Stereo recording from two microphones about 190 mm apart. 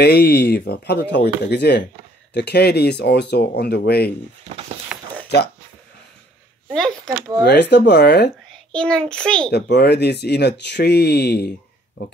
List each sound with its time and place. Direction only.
0.0 s speech: 55° left (ahead or behind)
4.5 s speech: 35° right (ahead or behind)
6.7 s a child's voice: 5° left (ahead or behind)
7.4 s speech: 65° left (ahead or behind)
8.7 s a child's voice: 5° left (ahead or behind)
9.5 s speech: 60° left (ahead or behind)